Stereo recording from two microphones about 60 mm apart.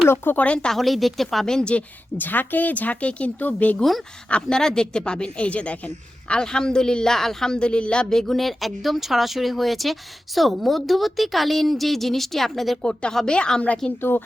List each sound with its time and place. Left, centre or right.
0.3 s speech: centre
0.7 s speech: centre
2.1 s speech: left
3.8 s speech: centre
4.3 s speech: centre
12.8 s speech: centre